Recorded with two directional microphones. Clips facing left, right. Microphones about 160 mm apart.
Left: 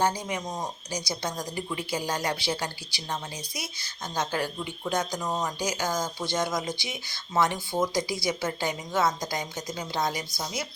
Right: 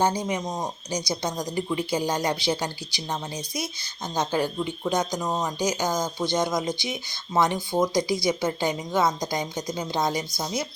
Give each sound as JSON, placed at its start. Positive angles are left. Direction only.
{"t": 0.0, "sound": "a woman's voice", "side_deg": -20}